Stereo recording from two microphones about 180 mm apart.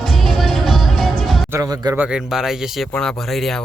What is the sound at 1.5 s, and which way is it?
Speech, 20° right (ahead or behind).